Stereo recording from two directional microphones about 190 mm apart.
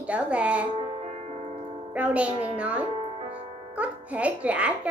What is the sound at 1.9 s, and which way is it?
A woman's voice, 5° right (ahead or behind).